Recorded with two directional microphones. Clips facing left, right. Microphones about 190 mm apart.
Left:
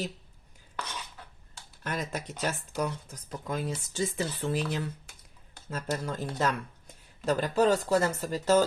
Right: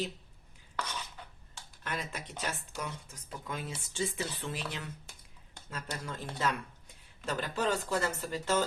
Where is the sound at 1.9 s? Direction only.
40° left (ahead or behind).